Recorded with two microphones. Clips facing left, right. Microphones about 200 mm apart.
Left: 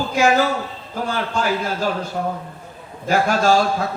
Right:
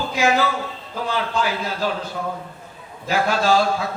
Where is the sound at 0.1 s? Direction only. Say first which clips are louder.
Left 3 dB; 45° left (ahead or behind).